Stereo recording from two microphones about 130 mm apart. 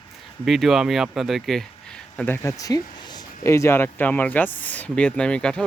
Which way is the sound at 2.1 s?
15° left (ahead or behind).